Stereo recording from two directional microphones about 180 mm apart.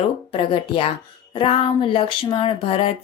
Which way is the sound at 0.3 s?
30° left (ahead or behind).